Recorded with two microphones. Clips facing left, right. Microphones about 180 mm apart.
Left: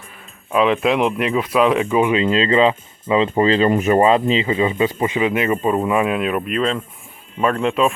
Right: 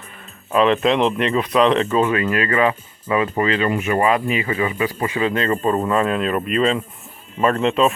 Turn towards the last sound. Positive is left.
turn(degrees=0)  # may be behind; listen again after turning